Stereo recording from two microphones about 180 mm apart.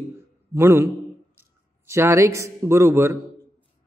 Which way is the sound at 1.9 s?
15° right (ahead or behind).